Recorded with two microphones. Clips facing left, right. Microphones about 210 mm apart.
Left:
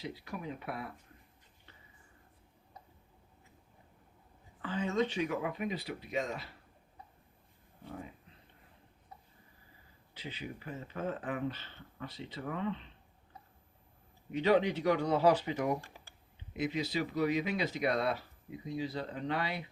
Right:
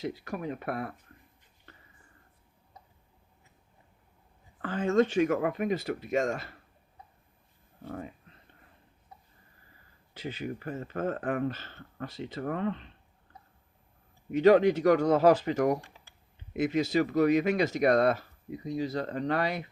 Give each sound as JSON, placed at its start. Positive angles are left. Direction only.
{"t": 0.0, "sound": "speech", "side_deg": -45}
{"t": 4.6, "sound": "speech", "side_deg": -50}
{"t": 10.2, "sound": "speech", "side_deg": -45}
{"t": 14.3, "sound": "speech", "side_deg": -45}